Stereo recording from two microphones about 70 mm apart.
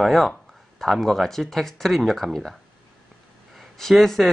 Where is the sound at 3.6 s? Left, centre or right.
Centre.